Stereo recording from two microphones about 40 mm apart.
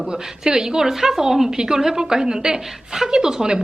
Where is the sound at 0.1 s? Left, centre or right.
Centre.